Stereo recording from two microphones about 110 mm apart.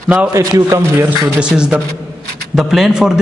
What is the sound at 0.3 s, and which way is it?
Speech, 30° right (ahead or behind).